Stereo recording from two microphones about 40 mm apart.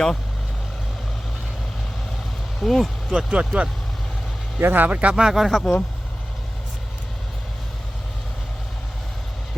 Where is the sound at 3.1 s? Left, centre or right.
Centre.